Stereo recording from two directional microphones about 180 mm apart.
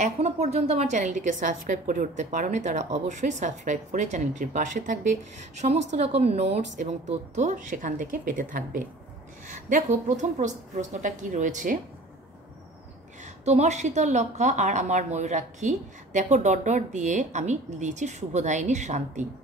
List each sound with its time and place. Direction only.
0.0 s a woman's voice: 35° right (ahead or behind)
13.2 s a woman's voice: 40° right (ahead or behind)